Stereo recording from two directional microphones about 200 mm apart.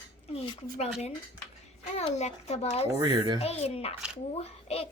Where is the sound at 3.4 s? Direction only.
30° left (ahead or behind).